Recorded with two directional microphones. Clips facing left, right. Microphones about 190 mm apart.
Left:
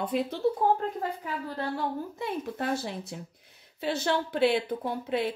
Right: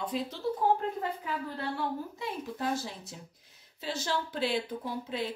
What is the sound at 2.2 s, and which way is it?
Speech, 60° left (ahead or behind).